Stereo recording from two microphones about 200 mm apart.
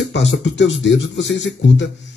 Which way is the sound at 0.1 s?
65° left (ahead or behind).